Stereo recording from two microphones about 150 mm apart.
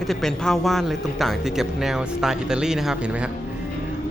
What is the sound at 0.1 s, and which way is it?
Speech, centre (ahead or behind).